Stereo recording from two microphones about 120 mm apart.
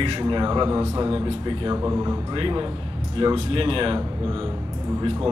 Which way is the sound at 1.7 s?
25° right (ahead or behind).